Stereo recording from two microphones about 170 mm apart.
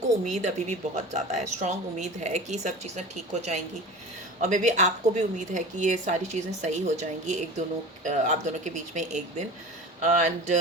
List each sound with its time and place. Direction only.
0.3 s speech: 45° right (ahead or behind)